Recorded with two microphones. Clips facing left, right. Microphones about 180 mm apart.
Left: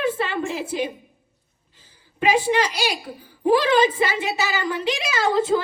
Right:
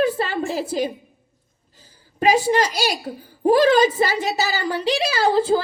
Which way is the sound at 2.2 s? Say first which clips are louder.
Right 2 dB; 40° right (ahead or behind).